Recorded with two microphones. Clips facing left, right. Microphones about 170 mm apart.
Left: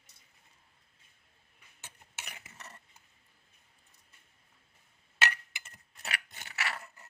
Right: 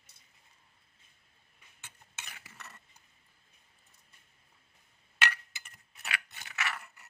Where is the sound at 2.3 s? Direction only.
25° left (ahead or behind).